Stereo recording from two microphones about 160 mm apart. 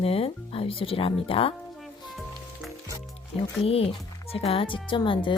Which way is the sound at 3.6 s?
40° left (ahead or behind).